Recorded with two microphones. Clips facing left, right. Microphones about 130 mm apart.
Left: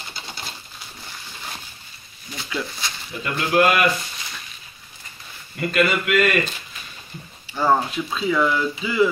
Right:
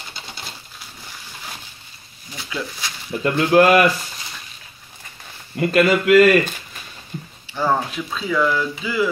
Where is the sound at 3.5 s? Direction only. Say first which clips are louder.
Right 4 dB; 35° right (ahead or behind).